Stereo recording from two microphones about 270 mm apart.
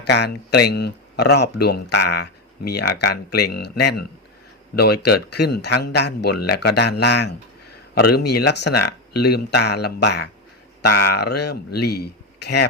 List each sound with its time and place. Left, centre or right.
0.0 s a man's voice: left